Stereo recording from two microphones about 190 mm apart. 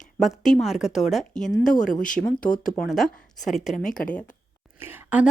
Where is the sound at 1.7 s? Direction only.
45° left (ahead or behind).